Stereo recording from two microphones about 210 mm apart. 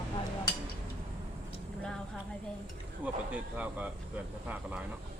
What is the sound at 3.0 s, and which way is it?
Speech, 5° right (ahead or behind).